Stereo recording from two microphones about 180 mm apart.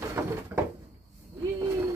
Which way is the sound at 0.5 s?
10° right (ahead or behind).